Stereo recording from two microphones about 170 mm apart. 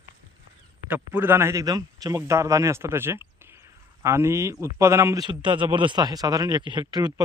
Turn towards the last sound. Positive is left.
turn(degrees=-25)  # may be behind; listen again after turning